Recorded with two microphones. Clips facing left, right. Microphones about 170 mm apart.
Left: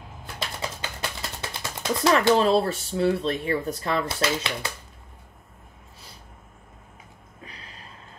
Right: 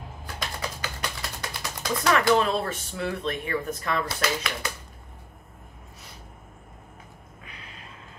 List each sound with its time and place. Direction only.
0.4 s typing: 25° left (ahead or behind)
1.4 s speech: 30° left (ahead or behind)
7.4 s a sound: 35° left (ahead or behind)